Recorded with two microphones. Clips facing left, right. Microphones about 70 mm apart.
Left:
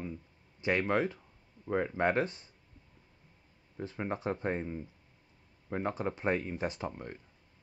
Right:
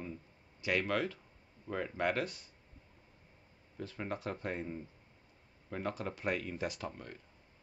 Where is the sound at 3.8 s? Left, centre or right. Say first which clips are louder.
Left 4 dB; left.